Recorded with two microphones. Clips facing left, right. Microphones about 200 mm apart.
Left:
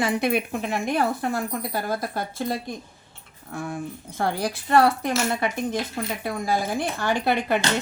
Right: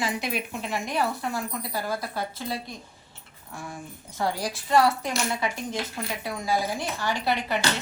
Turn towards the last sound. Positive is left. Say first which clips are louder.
# left 4 dB
turn(degrees=55)  # may be behind; listen again after turning